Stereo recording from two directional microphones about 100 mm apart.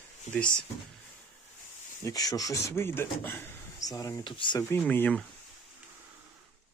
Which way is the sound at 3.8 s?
35° left (ahead or behind).